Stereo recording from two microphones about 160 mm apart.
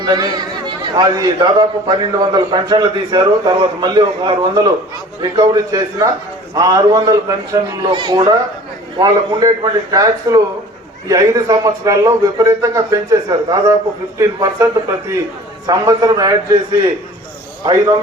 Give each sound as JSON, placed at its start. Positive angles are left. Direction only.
{"t": 0.0, "sound": "a man's voice", "side_deg": -25}
{"t": 9.4, "sound": "a man's voice", "side_deg": -20}
{"t": 17.6, "sound": "a man's voice", "side_deg": -25}